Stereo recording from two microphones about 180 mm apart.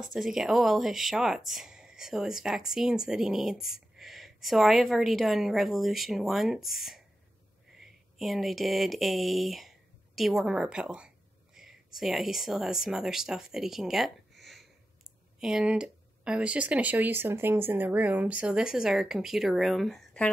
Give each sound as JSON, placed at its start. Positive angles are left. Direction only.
{"t": 0.0, "sound": "speech", "side_deg": 0}